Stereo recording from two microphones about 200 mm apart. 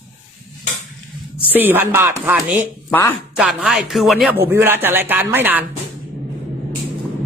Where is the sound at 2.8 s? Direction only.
10° left (ahead or behind).